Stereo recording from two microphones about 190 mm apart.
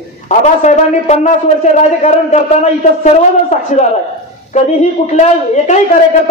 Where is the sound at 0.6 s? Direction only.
40° left (ahead or behind).